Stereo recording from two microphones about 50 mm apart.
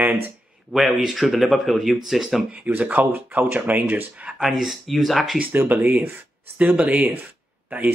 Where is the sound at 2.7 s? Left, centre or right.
Right.